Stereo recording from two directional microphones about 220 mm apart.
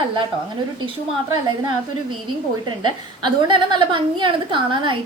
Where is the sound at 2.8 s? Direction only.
20° right (ahead or behind).